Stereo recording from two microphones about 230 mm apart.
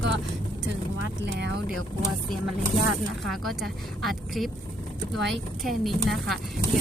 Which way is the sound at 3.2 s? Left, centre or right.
Centre.